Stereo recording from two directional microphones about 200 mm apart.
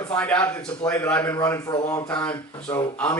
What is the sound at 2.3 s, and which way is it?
Speech, 20° left (ahead or behind).